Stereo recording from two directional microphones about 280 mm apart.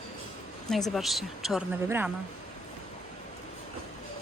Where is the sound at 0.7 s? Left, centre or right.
Centre.